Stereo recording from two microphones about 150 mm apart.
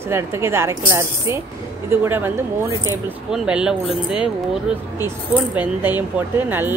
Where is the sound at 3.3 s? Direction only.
5° right (ahead or behind).